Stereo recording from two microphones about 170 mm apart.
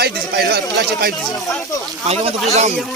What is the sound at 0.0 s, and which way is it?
A man's voice, 70° right (ahead or behind).